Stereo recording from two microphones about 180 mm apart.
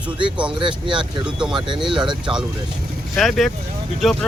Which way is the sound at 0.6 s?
25° right (ahead or behind).